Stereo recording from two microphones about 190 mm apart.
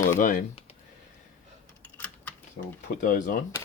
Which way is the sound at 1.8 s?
10° left (ahead or behind).